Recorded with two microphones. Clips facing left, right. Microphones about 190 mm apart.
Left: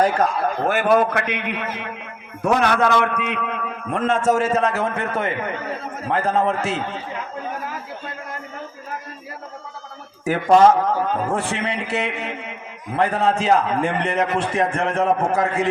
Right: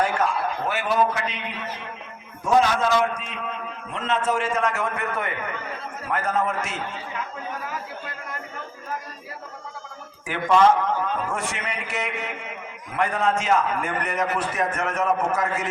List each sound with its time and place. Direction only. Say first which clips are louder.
0.0 s a man's voice: left 5 dB; 40° left (ahead or behind)
10.2 s a man's voice: left 5 dB; 40° left (ahead or behind)